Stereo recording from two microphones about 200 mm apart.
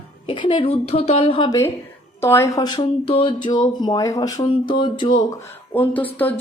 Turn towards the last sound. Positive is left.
turn(degrees=10)  # may be behind; listen again after turning